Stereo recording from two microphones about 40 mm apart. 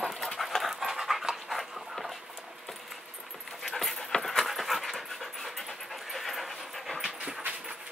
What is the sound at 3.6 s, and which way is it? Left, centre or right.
Dog, centre.